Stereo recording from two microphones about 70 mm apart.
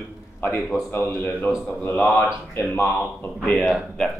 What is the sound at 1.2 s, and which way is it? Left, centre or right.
Speech, centre.